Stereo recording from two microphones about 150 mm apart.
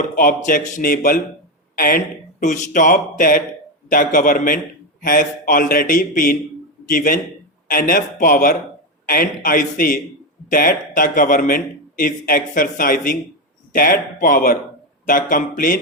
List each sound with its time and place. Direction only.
0.2 s speech: 60° left (ahead or behind)
2.4 s a man's voice: 55° left (ahead or behind)